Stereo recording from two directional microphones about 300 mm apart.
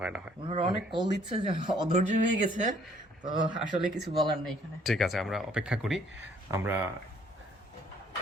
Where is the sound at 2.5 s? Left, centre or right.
Right.